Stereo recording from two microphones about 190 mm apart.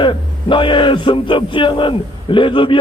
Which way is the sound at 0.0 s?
25° left (ahead or behind).